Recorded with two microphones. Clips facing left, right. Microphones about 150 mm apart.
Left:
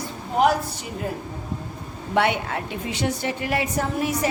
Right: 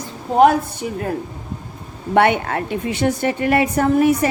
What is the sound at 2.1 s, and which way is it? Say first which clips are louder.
A woman's voice: right 6 dB; 55° right (ahead or behind).